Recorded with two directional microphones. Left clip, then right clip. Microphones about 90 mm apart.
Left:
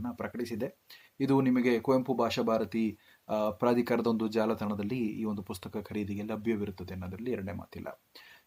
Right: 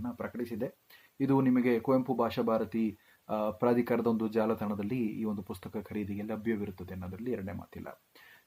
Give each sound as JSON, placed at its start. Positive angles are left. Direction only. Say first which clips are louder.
{"t": 0.0, "sound": "speech", "louder": "left 1 dB", "side_deg": 25}